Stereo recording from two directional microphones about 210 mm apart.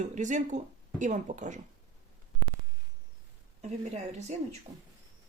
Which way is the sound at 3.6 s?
35° right (ahead or behind).